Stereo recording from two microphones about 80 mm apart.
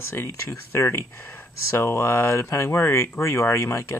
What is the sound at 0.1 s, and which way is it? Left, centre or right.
Speech, left.